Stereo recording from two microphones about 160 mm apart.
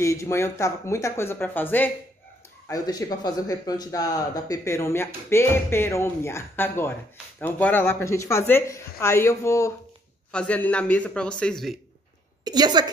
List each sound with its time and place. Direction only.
0.0 s speech: 20° left (ahead or behind)
2.7 s speech: 25° left (ahead or behind); by 11.8 s centre (ahead or behind)
12.4 s a woman's voice: 25° right (ahead or behind)